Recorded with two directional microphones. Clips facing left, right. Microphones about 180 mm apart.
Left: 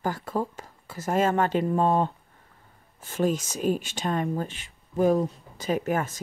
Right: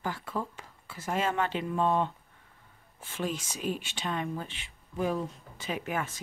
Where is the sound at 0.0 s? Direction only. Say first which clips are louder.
Left 6 dB; 40° left (ahead or behind).